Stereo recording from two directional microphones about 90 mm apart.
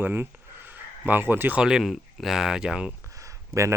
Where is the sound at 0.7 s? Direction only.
20° right (ahead or behind).